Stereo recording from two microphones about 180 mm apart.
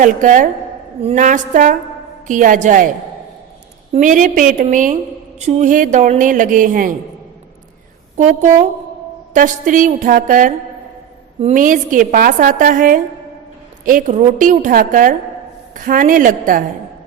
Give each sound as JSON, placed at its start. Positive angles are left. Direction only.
{"t": 0.0, "sound": "a woman's voice", "side_deg": -45}
{"t": 3.9, "sound": "a woman's voice", "side_deg": -45}
{"t": 8.1, "sound": "a woman's voice", "side_deg": -40}